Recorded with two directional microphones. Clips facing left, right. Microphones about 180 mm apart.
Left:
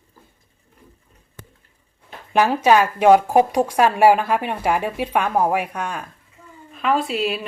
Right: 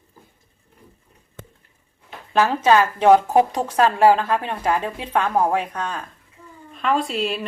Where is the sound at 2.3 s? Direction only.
15° left (ahead or behind).